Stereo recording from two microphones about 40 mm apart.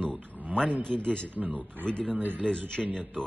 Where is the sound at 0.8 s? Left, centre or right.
Left.